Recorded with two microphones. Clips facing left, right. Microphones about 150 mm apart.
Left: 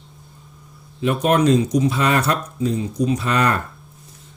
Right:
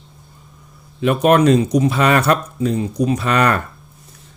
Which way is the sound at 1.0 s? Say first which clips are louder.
Right 4 dB; 70° right (ahead or behind).